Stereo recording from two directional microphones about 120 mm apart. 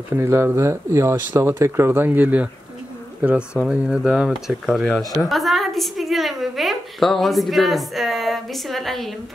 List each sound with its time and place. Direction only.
0.1 s a woman's voice: 20° right (ahead or behind); by 9.1 s centre (ahead or behind)